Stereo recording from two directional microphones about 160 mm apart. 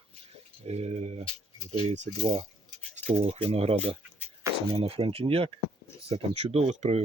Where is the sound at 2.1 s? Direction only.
35° right (ahead or behind).